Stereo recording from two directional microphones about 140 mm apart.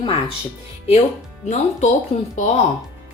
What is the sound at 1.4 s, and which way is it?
Speech, 55° left (ahead or behind).